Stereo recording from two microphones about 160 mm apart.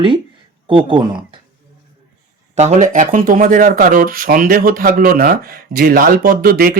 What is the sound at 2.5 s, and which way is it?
Speech, 45° right (ahead or behind).